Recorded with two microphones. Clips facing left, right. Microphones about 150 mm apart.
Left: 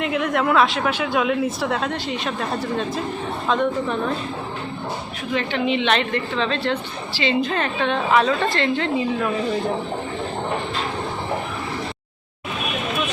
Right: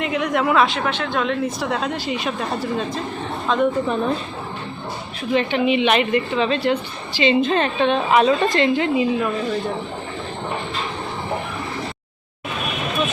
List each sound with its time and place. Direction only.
0.0 s speech: centre (ahead or behind)
5.3 s a woman's voice: 20° right (ahead or behind)